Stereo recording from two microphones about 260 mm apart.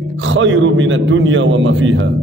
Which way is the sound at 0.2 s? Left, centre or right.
Right.